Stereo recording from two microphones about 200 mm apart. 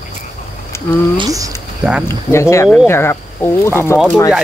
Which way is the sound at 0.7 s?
15° left (ahead or behind).